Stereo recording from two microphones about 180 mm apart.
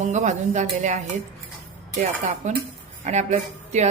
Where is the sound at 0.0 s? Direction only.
40° right (ahead or behind).